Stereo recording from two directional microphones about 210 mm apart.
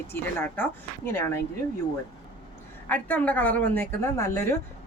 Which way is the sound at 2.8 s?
10° left (ahead or behind).